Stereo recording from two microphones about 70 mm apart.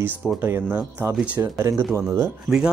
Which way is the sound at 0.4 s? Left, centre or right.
Right.